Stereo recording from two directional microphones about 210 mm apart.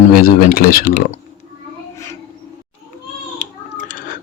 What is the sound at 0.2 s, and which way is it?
Speech, 45° left (ahead or behind).